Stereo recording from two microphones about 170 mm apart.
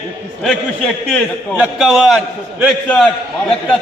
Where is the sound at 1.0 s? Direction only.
5° left (ahead or behind).